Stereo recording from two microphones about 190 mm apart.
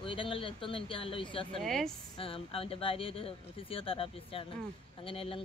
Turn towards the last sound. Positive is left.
turn(degrees=30)  # may be behind; listen again after turning